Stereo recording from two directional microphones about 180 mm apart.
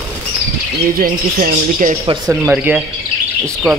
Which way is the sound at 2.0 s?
20° right (ahead or behind).